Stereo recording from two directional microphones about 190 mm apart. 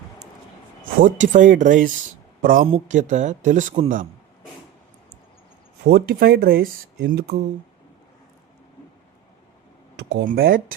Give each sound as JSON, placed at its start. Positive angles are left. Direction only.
{"t": 0.9, "sound": "speech", "side_deg": -45}
{"t": 2.6, "sound": "speech", "side_deg": -35}
{"t": 5.8, "sound": "speech", "side_deg": -55}
{"t": 10.2, "sound": "speech", "side_deg": -50}